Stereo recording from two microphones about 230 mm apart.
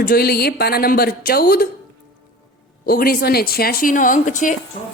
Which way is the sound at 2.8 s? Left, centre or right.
Left.